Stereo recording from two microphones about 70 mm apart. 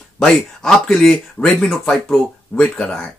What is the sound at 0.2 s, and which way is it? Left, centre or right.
Speech, centre.